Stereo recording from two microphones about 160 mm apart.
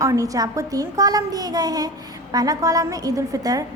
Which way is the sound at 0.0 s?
20° right (ahead or behind).